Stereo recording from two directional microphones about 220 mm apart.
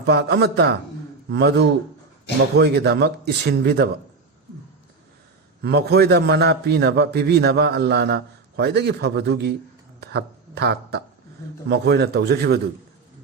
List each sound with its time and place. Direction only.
0.0 s a man's voice: 50° right (ahead or behind)
5.6 s a man's voice: 45° right (ahead or behind)